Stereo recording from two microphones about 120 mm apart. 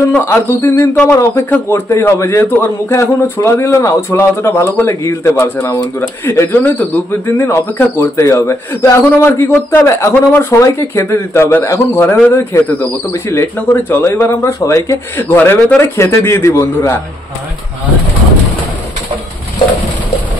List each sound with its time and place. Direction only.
0.1 s a man's voice: 20° left (ahead or behind)